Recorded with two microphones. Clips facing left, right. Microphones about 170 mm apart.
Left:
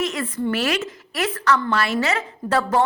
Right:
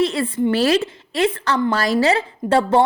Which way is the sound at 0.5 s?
30° right (ahead or behind).